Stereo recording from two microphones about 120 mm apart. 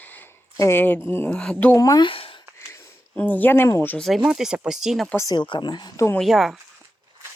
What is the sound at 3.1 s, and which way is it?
Speech, 15° left (ahead or behind).